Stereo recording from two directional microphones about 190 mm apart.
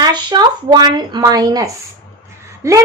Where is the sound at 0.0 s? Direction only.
20° right (ahead or behind).